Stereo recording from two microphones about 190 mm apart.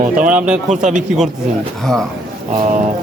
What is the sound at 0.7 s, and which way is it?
Speech, 40° right (ahead or behind).